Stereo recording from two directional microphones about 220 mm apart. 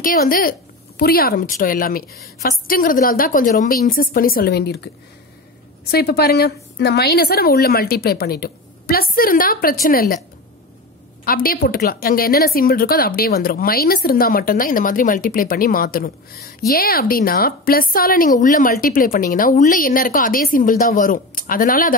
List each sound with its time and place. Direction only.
0.0 s a woman's voice: 40° left (ahead or behind)
11.2 s a woman's voice: 40° left (ahead or behind)